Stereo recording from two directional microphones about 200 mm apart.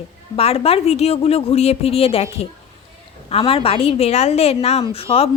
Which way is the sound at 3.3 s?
30° left (ahead or behind).